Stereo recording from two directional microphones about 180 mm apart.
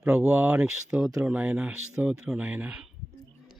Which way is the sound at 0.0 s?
5° right (ahead or behind).